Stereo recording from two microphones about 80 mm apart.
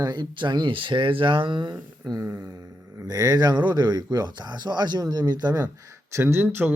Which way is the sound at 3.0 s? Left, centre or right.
Right.